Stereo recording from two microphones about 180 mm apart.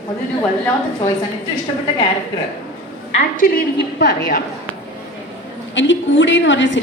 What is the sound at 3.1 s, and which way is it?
A woman's voice, 50° left (ahead or behind).